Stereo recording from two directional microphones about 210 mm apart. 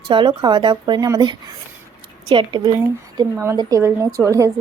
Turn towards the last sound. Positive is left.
turn(degrees=-15)  # may be behind; listen again after turning